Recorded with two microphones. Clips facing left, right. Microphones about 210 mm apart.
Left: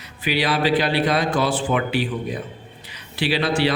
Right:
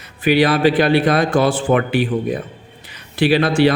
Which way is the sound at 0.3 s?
50° right (ahead or behind).